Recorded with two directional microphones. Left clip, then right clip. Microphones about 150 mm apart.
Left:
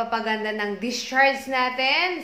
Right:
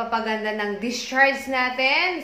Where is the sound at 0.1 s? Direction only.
15° left (ahead or behind).